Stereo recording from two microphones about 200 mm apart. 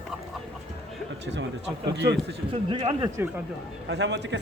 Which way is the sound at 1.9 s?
60° right (ahead or behind).